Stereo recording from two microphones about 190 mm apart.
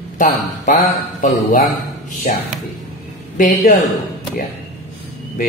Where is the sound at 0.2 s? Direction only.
45° left (ahead or behind).